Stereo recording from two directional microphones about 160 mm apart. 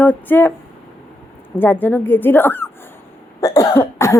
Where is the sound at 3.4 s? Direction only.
20° left (ahead or behind).